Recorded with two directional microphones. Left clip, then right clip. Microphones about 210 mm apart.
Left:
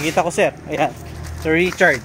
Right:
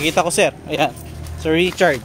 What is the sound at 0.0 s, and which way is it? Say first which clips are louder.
Speech: right 1 dB; 20° right (ahead or behind).